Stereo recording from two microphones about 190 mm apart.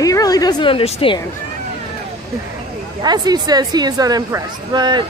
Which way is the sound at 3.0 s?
20° right (ahead or behind).